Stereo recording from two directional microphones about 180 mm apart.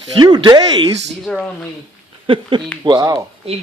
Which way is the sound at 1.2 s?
5° left (ahead or behind).